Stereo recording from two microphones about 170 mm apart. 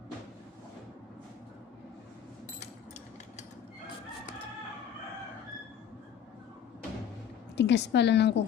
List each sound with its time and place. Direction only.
7.5 s a woman's voice: 90° left